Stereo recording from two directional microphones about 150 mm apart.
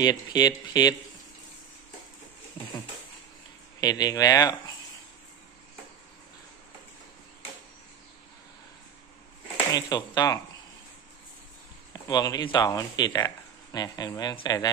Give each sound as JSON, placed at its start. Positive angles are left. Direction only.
{"t": 0.0, "sound": "speech", "side_deg": 25}
{"t": 3.8, "sound": "speech", "side_deg": 25}
{"t": 9.8, "sound": "speech", "side_deg": 25}
{"t": 11.9, "sound": "speech", "side_deg": 25}